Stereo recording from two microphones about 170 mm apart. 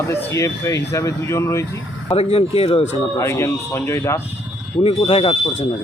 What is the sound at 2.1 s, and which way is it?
Speech, 35° left (ahead or behind).